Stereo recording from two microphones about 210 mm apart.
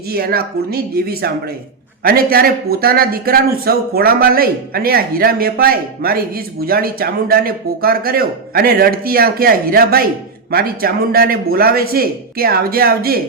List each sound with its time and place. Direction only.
0.1 s a man's voice: 45° right (ahead or behind)